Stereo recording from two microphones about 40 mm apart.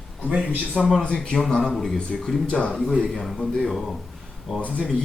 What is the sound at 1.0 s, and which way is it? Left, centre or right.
Speech, left.